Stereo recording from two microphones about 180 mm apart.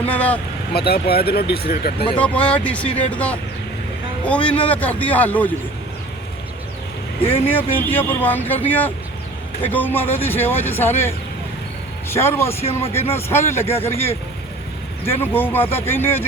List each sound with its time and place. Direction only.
0.1 s speech: 10° left (ahead or behind)
0.7 s speech: 60° left (ahead or behind)
2.1 s speech: 5° left (ahead or behind)
7.2 s speech: 30° left (ahead or behind)
7.4 s speech: 10° left (ahead or behind)
15.2 s speech: 10° left (ahead or behind)